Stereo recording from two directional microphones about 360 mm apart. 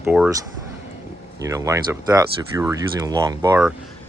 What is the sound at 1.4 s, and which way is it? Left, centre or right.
Speech, centre.